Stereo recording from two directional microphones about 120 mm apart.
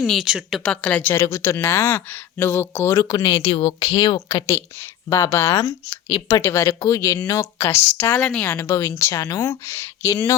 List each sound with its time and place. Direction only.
0.0 s speech: centre (ahead or behind)
1.1 s speech: 25° left (ahead or behind)
3.4 s speech: 50° left (ahead or behind)
4.3 s speech: 25° left (ahead or behind)
8.3 s speech: 5° left (ahead or behind)
8.5 s speech: 20° left (ahead or behind)